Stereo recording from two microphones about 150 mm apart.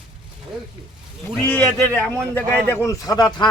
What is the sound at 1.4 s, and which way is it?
A man's voice, 10° left (ahead or behind).